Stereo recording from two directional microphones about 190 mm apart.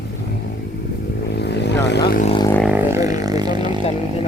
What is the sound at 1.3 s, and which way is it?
Vehicle, 60° left (ahead or behind).